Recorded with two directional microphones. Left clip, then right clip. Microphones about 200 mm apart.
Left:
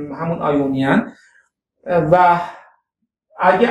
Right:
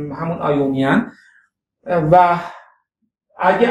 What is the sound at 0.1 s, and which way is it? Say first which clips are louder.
Speech: left 1 dB; 5° right (ahead or behind).